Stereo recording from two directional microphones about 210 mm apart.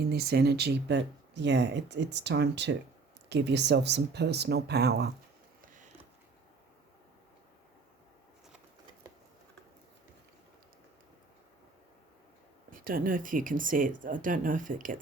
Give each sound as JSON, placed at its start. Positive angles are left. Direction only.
{"t": 0.0, "sound": "speech", "side_deg": -50}
{"t": 12.7, "sound": "speech", "side_deg": -40}